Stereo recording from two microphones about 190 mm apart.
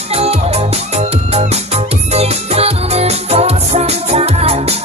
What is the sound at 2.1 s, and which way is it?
Music, 35° right (ahead or behind).